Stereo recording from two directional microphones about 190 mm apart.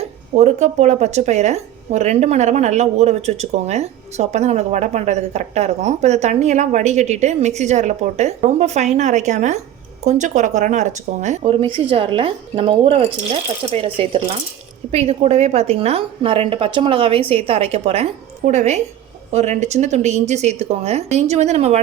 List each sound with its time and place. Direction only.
0.3 s speech: 35° right (ahead or behind)